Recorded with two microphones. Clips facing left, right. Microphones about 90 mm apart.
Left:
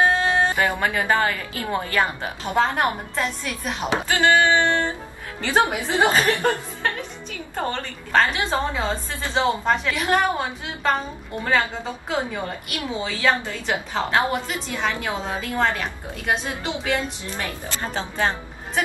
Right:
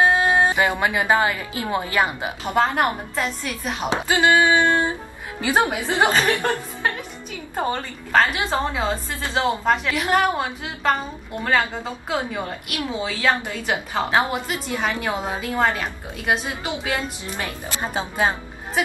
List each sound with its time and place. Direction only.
0.0 s a woman's voice: 15° right (ahead or behind)
3.8 s a woman's voice: 15° right (ahead or behind)
7.5 s a woman's voice: 10° right (ahead or behind)
12.1 s a woman's voice: 5° right (ahead or behind)